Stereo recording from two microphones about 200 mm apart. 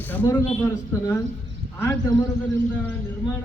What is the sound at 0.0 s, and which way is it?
Speech, 10° left (ahead or behind).